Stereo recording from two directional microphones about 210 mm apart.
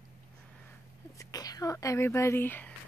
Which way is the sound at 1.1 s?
15° left (ahead or behind).